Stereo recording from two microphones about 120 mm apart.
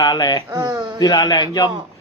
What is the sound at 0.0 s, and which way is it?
Speech, 30° left (ahead or behind).